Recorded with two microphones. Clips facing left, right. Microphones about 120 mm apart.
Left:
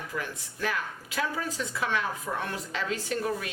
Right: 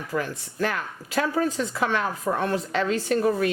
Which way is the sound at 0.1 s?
55° right (ahead or behind).